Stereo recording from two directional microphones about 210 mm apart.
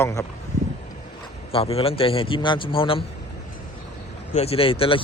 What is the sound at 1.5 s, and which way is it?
A man's voice, 30° left (ahead or behind).